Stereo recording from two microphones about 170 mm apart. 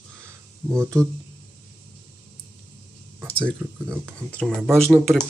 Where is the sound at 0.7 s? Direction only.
15° right (ahead or behind).